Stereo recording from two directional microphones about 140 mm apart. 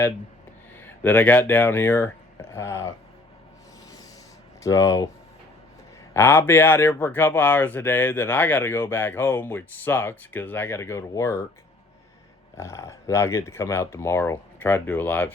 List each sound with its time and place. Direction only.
0.8 s speech: 15° left (ahead or behind)
4.6 s speech: 25° left (ahead or behind)
6.1 s speech: 15° left (ahead or behind)
12.5 s speech: 20° left (ahead or behind)